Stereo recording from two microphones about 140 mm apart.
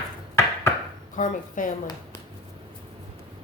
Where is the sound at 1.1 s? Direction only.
70° left (ahead or behind).